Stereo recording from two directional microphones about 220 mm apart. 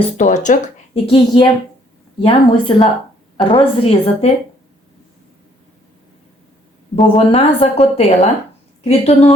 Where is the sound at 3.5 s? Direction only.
25° left (ahead or behind).